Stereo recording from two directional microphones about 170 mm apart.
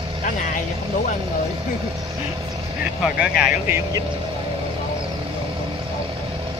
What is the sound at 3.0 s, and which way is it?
Speech, 5° right (ahead or behind).